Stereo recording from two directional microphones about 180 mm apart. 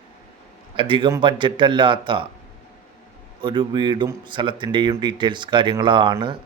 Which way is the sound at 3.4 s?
25° right (ahead or behind).